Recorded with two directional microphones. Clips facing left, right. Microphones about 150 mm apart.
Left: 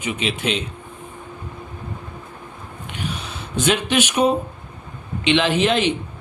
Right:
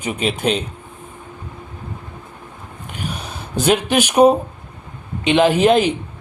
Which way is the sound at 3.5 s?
40° right (ahead or behind).